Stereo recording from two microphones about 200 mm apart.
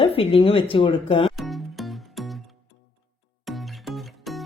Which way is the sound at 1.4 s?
Centre (ahead or behind).